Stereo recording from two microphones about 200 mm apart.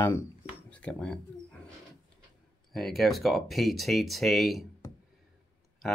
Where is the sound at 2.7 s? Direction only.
Centre (ahead or behind).